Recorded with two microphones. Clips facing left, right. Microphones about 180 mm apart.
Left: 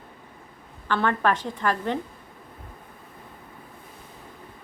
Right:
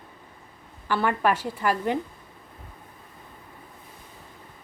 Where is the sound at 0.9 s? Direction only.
10° right (ahead or behind).